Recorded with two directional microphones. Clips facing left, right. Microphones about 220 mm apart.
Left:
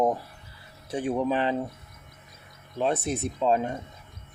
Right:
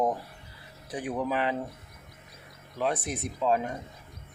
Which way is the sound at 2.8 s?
25° left (ahead or behind).